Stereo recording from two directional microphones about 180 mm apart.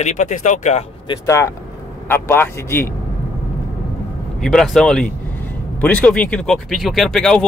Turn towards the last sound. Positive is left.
turn(degrees=5)  # may be behind; listen again after turning